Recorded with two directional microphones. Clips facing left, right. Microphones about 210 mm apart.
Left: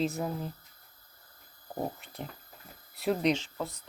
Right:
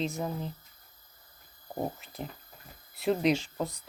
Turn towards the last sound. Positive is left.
turn(degrees=-15)  # may be behind; listen again after turning